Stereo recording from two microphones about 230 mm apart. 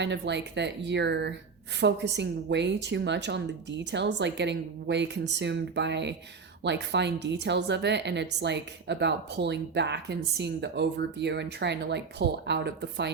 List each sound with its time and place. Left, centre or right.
0.0 s a woman's voice: right